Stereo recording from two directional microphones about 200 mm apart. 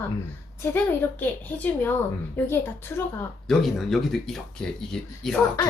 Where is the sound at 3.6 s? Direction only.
Centre (ahead or behind).